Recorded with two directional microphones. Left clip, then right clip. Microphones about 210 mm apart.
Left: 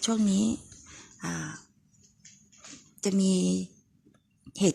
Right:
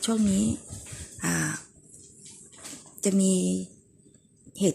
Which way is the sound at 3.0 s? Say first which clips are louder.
Right 2 dB; 15° left (ahead or behind).